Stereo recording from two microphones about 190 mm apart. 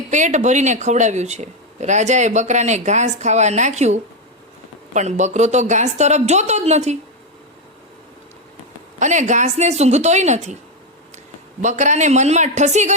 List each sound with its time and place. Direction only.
0.1 s speech: 40° right (ahead or behind)
9.0 s speech: 40° right (ahead or behind)
11.6 s speech: 40° right (ahead or behind)